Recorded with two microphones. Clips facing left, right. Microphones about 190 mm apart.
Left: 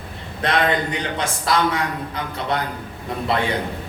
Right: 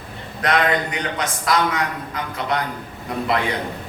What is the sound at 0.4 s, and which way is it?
A man's voice, 30° left (ahead or behind).